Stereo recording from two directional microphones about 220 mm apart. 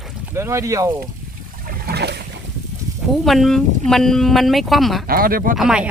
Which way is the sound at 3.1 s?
Centre (ahead or behind).